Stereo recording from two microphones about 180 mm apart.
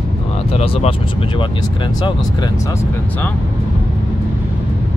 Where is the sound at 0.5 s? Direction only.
35° left (ahead or behind).